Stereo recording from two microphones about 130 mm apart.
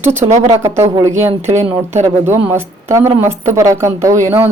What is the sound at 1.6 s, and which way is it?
Speech, 60° right (ahead or behind).